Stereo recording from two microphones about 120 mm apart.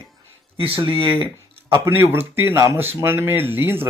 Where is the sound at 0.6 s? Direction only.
45° right (ahead or behind).